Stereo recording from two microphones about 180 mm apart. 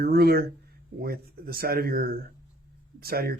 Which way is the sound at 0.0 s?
60° right (ahead or behind).